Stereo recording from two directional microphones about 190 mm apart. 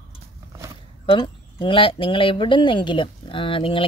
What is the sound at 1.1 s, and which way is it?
Speech, 25° left (ahead or behind).